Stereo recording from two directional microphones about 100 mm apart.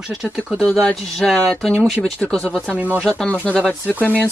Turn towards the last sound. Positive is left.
turn(degrees=15)  # may be behind; listen again after turning